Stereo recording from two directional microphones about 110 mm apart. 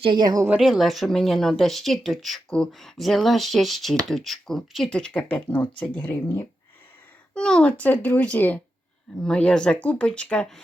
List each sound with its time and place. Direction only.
0.0 s a woman's voice: 45° right (ahead or behind)
0.6 s speech: 5° right (ahead or behind); by 6.5 s 20° left (ahead or behind)
7.3 s speech: 10° left (ahead or behind)